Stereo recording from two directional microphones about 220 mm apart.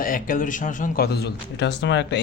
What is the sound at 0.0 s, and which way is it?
A man's voice, 40° left (ahead or behind).